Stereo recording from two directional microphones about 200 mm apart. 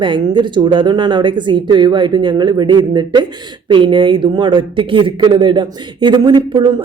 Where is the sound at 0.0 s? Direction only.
20° right (ahead or behind).